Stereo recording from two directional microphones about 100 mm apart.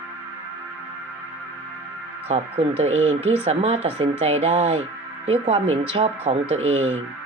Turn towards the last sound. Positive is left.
turn(degrees=-80)